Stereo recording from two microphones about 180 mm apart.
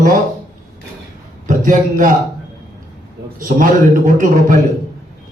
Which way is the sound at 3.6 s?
45° right (ahead or behind).